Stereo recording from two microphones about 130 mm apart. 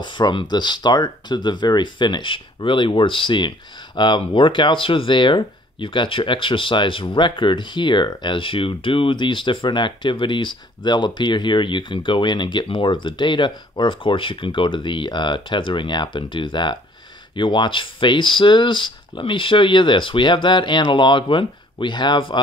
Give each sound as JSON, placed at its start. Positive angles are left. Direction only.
{"t": 0.0, "sound": "speech", "side_deg": 35}